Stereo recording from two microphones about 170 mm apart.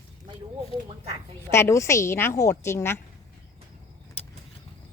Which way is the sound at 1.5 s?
15° left (ahead or behind).